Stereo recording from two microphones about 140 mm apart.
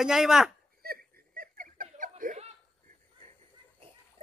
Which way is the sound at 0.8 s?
90° right.